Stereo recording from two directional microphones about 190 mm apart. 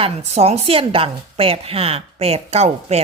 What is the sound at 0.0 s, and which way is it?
A woman's voice, 35° right (ahead or behind).